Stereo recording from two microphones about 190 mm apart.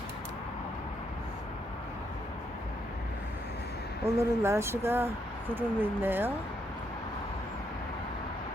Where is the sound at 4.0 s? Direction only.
15° right (ahead or behind).